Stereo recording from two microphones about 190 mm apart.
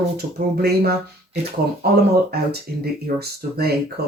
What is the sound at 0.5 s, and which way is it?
Speech, 55° right (ahead or behind).